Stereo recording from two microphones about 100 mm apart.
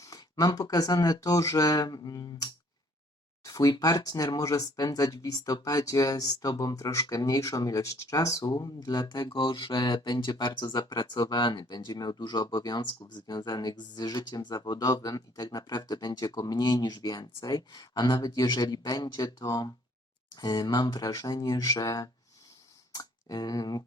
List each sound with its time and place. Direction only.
0.0 s speech: 40° left (ahead or behind)